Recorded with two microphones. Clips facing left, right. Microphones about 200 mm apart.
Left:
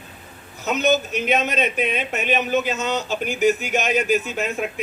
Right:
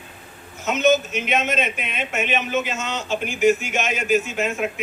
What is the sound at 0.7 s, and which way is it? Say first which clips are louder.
Speech: right 1 dB; 35° left (ahead or behind).